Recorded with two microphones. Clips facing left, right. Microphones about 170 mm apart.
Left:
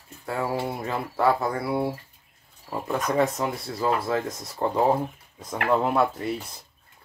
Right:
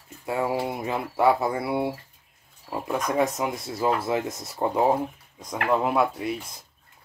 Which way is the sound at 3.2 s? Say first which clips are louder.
Left 1 dB; 10° right (ahead or behind).